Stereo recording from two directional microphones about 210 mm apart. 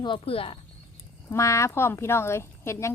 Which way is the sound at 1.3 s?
15° left (ahead or behind).